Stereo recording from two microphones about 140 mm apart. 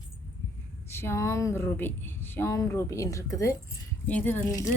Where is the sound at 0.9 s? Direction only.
20° left (ahead or behind).